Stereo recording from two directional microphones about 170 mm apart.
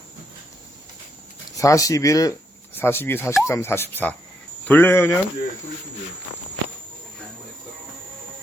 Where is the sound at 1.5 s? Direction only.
20° left (ahead or behind).